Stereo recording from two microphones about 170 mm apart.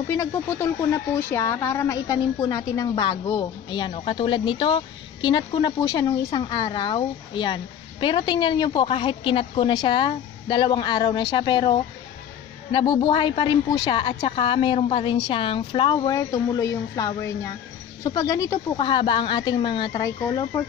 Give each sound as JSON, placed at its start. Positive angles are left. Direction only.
{"t": 0.1, "sound": "a woman's voice", "side_deg": 15}